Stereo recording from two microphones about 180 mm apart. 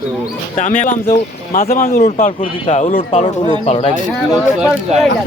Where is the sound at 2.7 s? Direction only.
40° left (ahead or behind).